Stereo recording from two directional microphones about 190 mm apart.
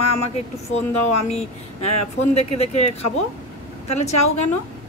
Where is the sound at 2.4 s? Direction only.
35° left (ahead or behind).